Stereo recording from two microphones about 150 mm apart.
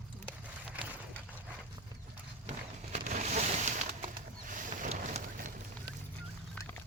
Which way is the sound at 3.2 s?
50° right (ahead or behind).